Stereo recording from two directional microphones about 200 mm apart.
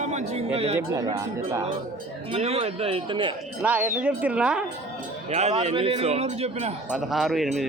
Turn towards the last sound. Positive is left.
turn(degrees=0)  # may be behind; listen again after turning